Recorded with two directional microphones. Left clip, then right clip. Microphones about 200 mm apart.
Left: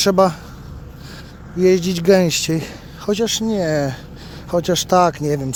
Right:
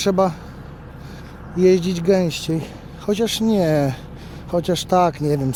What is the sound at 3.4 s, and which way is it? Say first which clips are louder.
Speech: right 1 dB; 15° right (ahead or behind).